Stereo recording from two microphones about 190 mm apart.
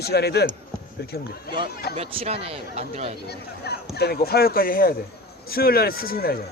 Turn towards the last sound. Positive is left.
turn(degrees=55)  # may be behind; listen again after turning